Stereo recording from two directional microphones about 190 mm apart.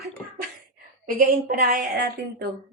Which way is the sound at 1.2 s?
50° right (ahead or behind).